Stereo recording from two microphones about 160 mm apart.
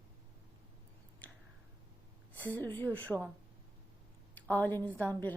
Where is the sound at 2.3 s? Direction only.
10° left (ahead or behind).